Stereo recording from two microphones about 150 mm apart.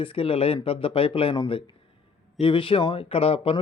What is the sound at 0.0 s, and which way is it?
Speech, 35° left (ahead or behind).